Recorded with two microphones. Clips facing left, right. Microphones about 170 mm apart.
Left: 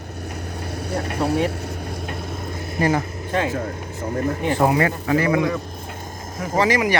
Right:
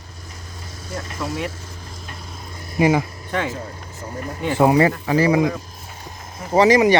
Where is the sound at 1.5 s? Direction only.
65° left (ahead or behind).